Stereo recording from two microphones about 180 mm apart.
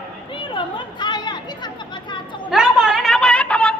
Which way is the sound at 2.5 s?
5° right (ahead or behind).